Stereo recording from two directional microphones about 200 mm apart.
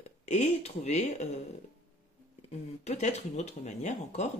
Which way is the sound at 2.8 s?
35° left (ahead or behind).